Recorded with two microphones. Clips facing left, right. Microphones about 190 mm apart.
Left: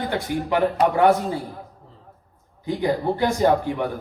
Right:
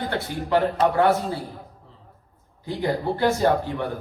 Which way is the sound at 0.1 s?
15° left (ahead or behind).